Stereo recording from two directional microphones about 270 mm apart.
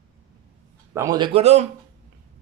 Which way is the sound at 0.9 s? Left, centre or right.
Centre.